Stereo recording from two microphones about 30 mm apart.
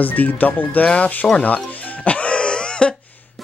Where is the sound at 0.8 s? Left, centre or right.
Left.